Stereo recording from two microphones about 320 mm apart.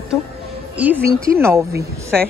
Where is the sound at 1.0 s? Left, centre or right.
Right.